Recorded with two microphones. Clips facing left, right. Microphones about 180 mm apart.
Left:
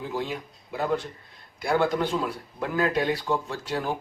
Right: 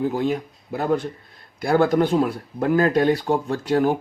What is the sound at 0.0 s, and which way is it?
Speech, 50° right (ahead or behind).